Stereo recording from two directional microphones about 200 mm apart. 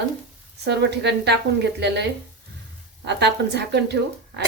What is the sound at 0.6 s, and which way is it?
A woman's voice, 60° right (ahead or behind).